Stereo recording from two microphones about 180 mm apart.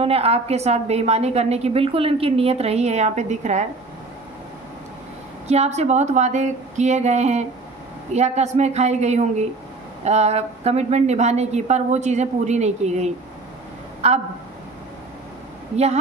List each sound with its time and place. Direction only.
0.0 s a woman's voice: 35° right (ahead or behind)
5.5 s a woman's voice: 35° right (ahead or behind)
15.7 s a woman's voice: 35° right (ahead or behind)